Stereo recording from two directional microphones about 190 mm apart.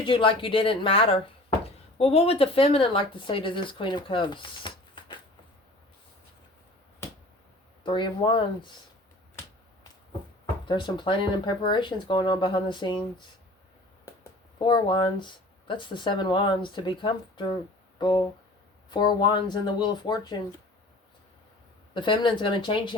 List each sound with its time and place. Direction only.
0.0 s speech: 25° left (ahead or behind)
7.9 s speech: 25° left (ahead or behind)
10.7 s speech: 25° left (ahead or behind)
14.6 s speech: 25° left (ahead or behind)
18.9 s speech: 25° left (ahead or behind)
21.9 s speech: 25° left (ahead or behind)